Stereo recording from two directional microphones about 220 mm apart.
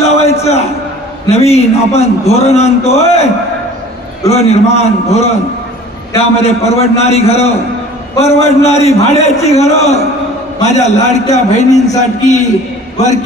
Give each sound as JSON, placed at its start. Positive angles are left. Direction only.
{"t": 0.0, "sound": "a sound", "side_deg": 30}
{"t": 1.3, "sound": "a man's voice", "side_deg": 30}
{"t": 4.4, "sound": "a man's voice", "side_deg": 30}
{"t": 6.4, "sound": "a man's voice", "side_deg": 30}